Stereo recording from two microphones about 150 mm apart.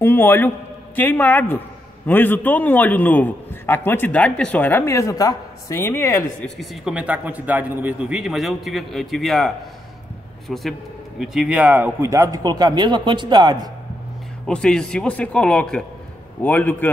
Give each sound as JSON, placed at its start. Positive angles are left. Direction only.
{"t": 0.0, "sound": "a man's voice", "side_deg": 15}
{"t": 6.4, "sound": "a man's voice", "side_deg": 0}
{"t": 10.5, "sound": "a man's voice", "side_deg": 0}
{"t": 14.4, "sound": "a man's voice", "side_deg": 5}